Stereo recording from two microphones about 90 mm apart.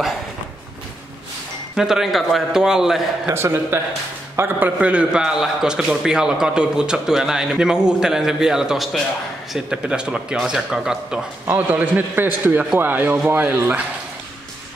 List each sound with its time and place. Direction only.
1.8 s speech: 5° right (ahead or behind)
3.3 s a man's voice: 30° right (ahead or behind); by 11.2 s 5° right (ahead or behind)
11.4 s speech: 20° right (ahead or behind)